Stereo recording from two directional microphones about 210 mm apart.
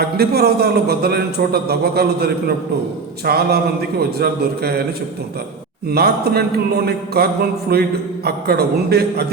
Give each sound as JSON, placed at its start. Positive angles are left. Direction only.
{"t": 0.0, "sound": "a man's voice", "side_deg": -50}
{"t": 5.9, "sound": "a man's voice", "side_deg": -50}